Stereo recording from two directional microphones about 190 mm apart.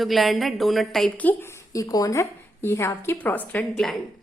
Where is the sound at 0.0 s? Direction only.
Centre (ahead or behind).